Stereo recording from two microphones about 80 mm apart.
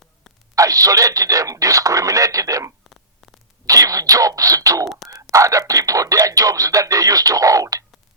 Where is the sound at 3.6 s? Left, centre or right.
Right.